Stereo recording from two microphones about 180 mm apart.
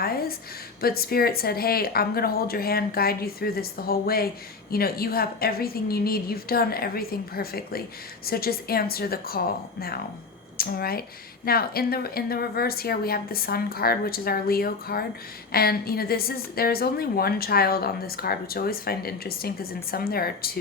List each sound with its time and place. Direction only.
0.0 s a sound: 60° left (ahead or behind)
0.8 s a woman's voice: 55° left (ahead or behind)
10.6 s a woman's voice: 55° left (ahead or behind)